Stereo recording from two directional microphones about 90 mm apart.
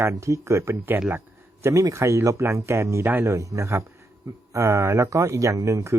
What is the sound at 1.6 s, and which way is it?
Speech, 30° right (ahead or behind).